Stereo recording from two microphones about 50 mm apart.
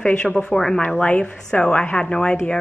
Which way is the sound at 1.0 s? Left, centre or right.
Left.